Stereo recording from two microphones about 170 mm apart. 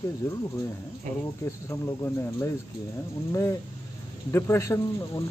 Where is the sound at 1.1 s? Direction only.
45° right (ahead or behind).